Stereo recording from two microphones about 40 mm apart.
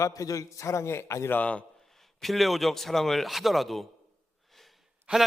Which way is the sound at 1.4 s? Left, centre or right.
Left.